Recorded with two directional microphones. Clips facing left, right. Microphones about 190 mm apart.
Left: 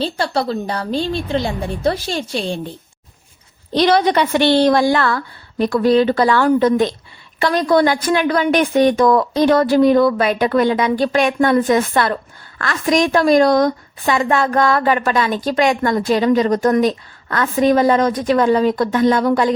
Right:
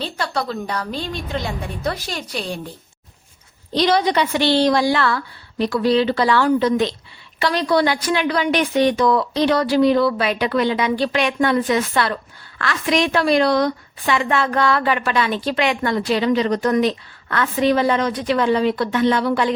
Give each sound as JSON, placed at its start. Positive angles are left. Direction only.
{"t": 0.0, "sound": "a woman's voice", "side_deg": 30}
{"t": 3.8, "sound": "a woman's voice", "side_deg": 55}